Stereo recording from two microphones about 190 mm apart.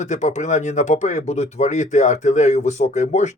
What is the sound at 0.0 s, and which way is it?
Speech, 40° left (ahead or behind).